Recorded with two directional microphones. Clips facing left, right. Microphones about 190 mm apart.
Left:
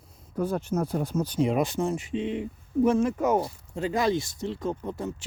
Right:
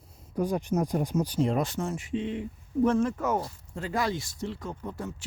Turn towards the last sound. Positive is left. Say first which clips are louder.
# left 4 dB
turn(degrees=20)  # may be behind; listen again after turning